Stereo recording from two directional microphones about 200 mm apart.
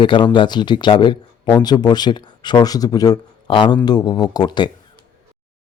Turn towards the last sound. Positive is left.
turn(degrees=20)  # may be behind; listen again after turning